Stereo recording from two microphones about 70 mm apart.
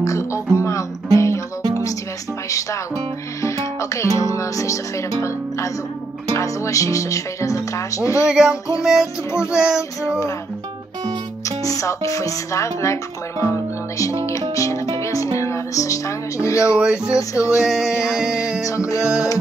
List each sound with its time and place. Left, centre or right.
0.0 s music: left
3.4 s music: left
6.3 s speech: left
8.3 s a sound: centre
11.4 s speech: left
14.5 s music: left
16.8 s a sound: centre
17.3 s speech: left
17.6 s music: centre
18.7 s music: left